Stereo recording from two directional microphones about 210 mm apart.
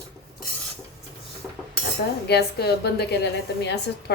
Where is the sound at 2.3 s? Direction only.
50° left (ahead or behind).